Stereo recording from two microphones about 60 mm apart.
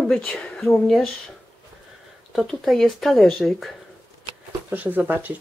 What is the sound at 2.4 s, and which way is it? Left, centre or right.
Speech, centre.